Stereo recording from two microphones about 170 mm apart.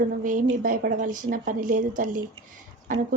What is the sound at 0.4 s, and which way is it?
A woman's voice, 55° right (ahead or behind).